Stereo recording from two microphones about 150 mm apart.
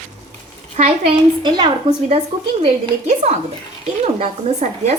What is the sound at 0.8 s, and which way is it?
Speech, 50° right (ahead or behind).